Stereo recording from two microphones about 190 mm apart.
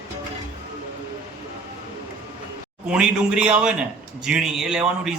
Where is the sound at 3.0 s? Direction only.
5° right (ahead or behind).